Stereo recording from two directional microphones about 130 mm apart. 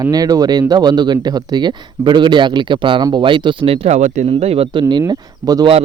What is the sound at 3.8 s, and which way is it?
Speech, 65° right (ahead or behind).